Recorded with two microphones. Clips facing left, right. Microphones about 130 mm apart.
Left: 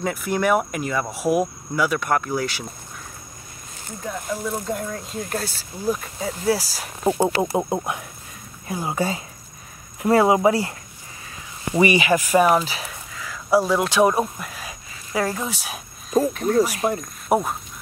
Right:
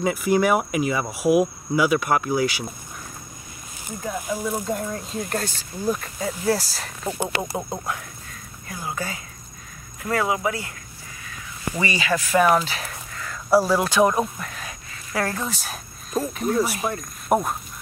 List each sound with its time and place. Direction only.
0.0 s speech: 5° right (ahead or behind)
3.8 s speech: 5° right (ahead or behind); by 6.9 s 10° left (ahead or behind)
7.1 s speech: 35° left (ahead or behind)
7.4 s speech: 20° left (ahead or behind); by 16.9 s 10° right (ahead or behind)
16.9 s speech: centre (ahead or behind)